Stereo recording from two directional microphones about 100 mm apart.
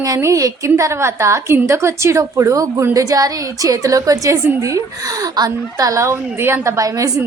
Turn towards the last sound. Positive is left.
turn(degrees=-35)  # may be behind; listen again after turning